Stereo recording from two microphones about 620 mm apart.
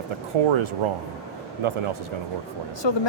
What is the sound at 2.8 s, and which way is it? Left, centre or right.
Speech, left.